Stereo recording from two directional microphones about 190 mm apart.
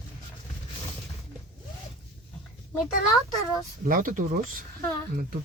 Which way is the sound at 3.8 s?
45° right (ahead or behind).